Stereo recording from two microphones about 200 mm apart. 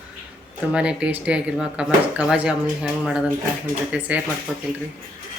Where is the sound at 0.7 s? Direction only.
5° right (ahead or behind).